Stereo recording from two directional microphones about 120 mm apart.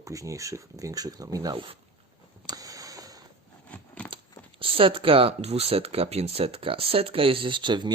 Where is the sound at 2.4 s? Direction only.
30° right (ahead or behind).